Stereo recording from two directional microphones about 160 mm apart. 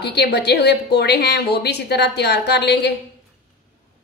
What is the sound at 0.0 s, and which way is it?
A woman's voice, 90° left.